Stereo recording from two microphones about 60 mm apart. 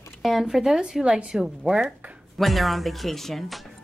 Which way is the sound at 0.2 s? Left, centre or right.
Centre.